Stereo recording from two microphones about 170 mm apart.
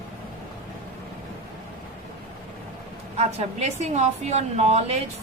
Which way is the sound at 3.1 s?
40° right (ahead or behind).